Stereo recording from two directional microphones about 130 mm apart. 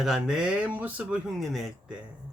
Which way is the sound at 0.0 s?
5° right (ahead or behind).